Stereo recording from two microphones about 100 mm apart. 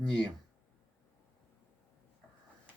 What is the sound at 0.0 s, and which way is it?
Speech, 10° left (ahead or behind).